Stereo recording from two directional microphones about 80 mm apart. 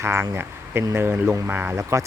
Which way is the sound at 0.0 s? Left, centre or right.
Right.